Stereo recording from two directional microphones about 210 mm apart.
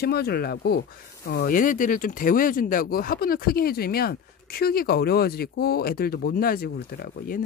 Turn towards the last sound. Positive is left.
turn(degrees=45)  # may be behind; listen again after turning